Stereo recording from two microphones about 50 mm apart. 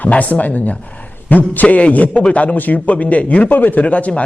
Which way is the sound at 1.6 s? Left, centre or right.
Left.